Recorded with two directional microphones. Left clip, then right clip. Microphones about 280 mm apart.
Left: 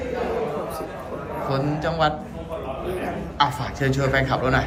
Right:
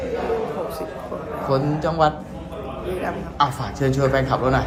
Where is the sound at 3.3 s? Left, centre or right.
Centre.